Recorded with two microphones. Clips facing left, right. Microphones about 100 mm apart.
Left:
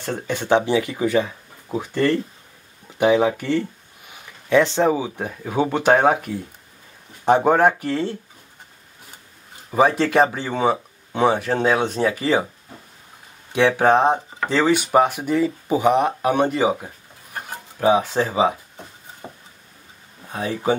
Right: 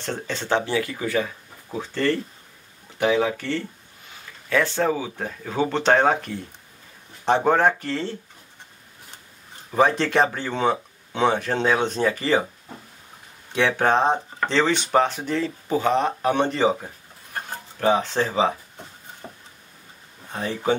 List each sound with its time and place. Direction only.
0.0 s speech: 15° left (ahead or behind)
9.7 s speech: 10° left (ahead or behind)
13.5 s speech: 15° left (ahead or behind)